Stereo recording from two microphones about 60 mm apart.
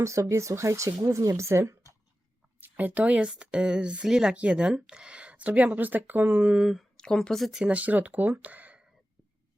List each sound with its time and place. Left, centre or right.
0.0 s speech: right
2.6 s a woman's voice: right
6.6 s speech: centre
6.9 s speech: centre
7.6 s a woman's voice: right